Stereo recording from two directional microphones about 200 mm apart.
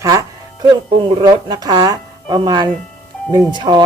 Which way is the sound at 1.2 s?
20° right (ahead or behind).